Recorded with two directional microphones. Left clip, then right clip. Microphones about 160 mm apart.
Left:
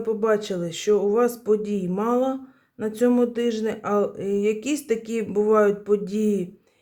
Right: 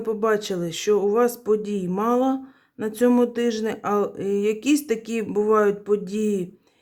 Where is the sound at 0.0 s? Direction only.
25° right (ahead or behind).